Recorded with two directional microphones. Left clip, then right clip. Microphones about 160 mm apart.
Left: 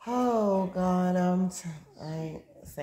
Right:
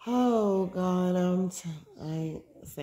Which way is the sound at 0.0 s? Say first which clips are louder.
Even; 30° right (ahead or behind).